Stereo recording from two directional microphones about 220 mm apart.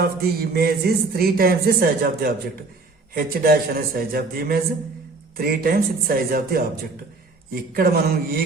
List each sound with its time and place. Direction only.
0.0 s a man's voice: 45° right (ahead or behind)